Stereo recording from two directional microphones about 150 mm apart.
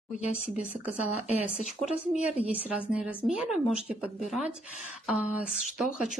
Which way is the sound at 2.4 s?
10° right (ahead or behind).